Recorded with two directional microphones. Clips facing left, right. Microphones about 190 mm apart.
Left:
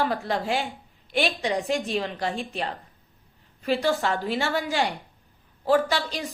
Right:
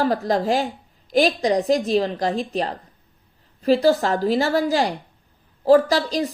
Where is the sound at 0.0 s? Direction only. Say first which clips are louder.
Right 6 dB; 40° right (ahead or behind).